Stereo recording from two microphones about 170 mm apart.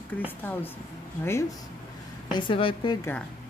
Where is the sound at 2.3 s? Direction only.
30° left (ahead or behind).